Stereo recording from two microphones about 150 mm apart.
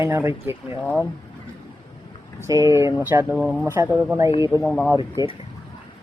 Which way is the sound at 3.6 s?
15° right (ahead or behind).